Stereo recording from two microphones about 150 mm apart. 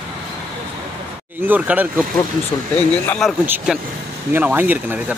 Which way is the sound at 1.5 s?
10° right (ahead or behind).